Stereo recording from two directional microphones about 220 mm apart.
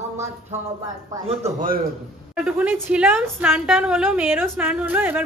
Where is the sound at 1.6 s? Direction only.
40° right (ahead or behind).